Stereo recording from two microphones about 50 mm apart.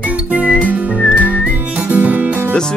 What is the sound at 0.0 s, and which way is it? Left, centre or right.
Music, right.